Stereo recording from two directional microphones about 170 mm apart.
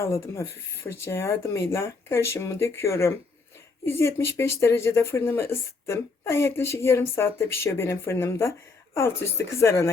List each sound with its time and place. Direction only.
0.0 s speech: 15° left (ahead or behind)